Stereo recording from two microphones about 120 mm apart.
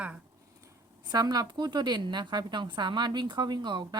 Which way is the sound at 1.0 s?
35° right (ahead or behind).